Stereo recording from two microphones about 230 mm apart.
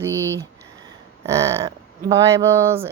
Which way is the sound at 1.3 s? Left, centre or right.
Centre.